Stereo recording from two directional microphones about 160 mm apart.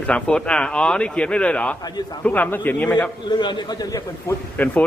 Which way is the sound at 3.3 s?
30° left (ahead or behind).